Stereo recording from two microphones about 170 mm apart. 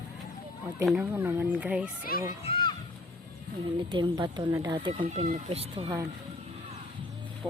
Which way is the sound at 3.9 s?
25° right (ahead or behind).